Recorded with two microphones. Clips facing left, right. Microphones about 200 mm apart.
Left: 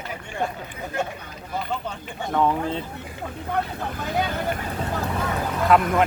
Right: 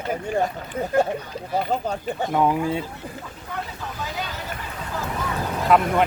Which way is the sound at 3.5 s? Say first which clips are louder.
Left 6 dB; 55° left (ahead or behind).